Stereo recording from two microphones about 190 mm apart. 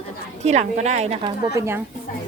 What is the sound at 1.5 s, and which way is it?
Speech, 15° right (ahead or behind).